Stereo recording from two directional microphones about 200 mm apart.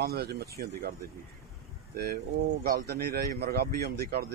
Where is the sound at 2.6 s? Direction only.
50° right (ahead or behind).